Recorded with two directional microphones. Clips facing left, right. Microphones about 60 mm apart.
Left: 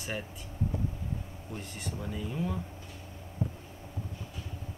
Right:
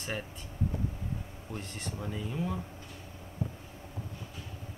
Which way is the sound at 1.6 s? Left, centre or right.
Centre.